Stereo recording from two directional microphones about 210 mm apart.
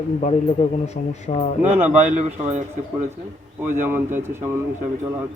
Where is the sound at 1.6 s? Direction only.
10° right (ahead or behind).